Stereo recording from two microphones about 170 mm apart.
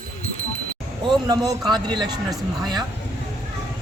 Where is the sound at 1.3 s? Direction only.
25° right (ahead or behind).